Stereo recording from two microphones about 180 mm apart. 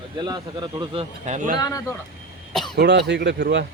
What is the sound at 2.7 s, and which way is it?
Speech, 70° right (ahead or behind).